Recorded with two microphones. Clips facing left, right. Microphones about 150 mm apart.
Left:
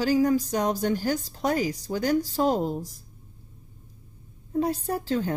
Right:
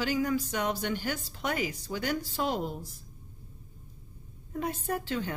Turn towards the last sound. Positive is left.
turn(degrees=40)  # may be behind; listen again after turning